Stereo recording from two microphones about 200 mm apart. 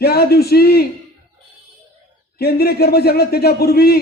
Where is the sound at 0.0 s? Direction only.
50° left (ahead or behind).